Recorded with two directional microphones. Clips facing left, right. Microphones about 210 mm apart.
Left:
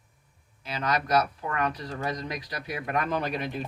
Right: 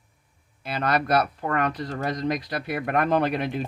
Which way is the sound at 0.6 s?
60° right (ahead or behind).